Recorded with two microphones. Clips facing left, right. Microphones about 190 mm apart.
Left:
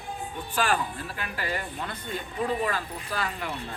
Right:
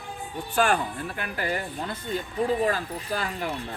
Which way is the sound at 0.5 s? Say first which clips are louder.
Right 3 dB; 45° right (ahead or behind).